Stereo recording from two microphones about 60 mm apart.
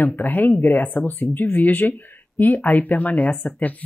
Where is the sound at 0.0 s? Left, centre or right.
Left.